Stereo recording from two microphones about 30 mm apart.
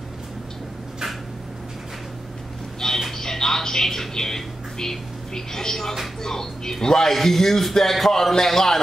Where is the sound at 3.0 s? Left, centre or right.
Centre.